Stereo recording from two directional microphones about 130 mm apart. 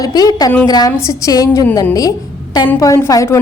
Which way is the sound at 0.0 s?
30° left (ahead or behind).